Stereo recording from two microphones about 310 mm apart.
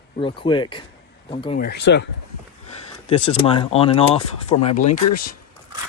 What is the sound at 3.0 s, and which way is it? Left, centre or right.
Speech, centre.